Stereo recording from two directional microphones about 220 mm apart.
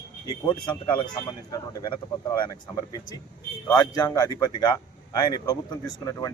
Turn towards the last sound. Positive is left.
turn(degrees=15)  # may be behind; listen again after turning